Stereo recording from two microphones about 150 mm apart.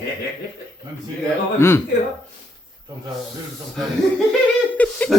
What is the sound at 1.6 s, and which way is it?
Speech, 15° left (ahead or behind).